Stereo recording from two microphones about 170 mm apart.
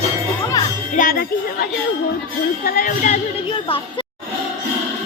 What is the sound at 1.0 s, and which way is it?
Speech, 60° left (ahead or behind).